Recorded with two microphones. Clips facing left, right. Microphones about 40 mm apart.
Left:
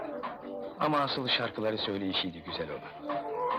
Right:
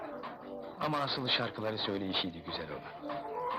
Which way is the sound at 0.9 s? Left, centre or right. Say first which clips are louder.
Left 5 dB; centre.